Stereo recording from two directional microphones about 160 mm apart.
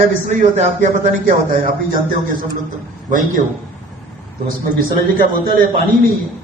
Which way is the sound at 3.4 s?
50° right (ahead or behind).